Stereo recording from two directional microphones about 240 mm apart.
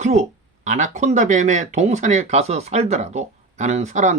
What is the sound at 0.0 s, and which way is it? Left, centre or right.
Speech, right.